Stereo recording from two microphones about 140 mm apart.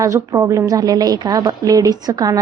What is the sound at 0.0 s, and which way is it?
A woman's voice, 25° right (ahead or behind).